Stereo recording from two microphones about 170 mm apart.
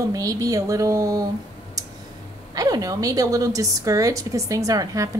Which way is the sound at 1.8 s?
20° right (ahead or behind).